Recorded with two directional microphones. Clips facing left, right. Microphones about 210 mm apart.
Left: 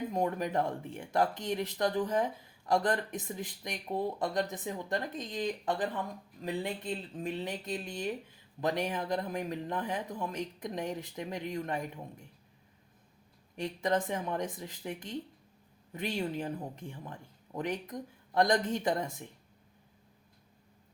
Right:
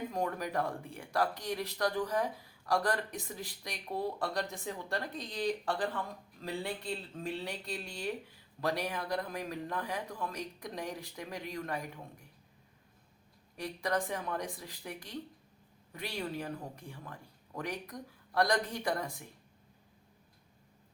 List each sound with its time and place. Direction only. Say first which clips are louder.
0.1 s speech: left 3 dB; 20° left (ahead or behind)
13.6 s speech: left 3 dB; 20° left (ahead or behind)